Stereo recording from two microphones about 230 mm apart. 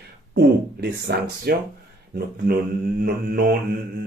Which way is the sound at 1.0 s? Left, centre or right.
Right.